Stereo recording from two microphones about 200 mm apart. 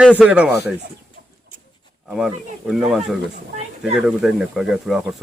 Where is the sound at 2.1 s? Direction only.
5° right (ahead or behind).